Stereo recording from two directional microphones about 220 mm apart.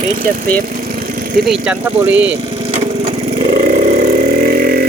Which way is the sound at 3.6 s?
35° right (ahead or behind).